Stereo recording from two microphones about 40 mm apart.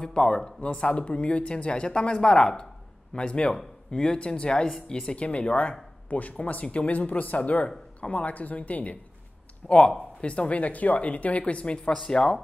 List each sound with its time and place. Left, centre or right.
0.0 s speech: left
5.1 s speech: left
7.0 s speech: left
9.7 s speech: left